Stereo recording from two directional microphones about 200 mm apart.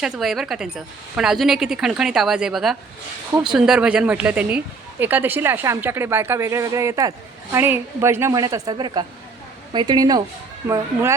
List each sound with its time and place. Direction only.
0.0 s a woman's voice: 5° right (ahead or behind)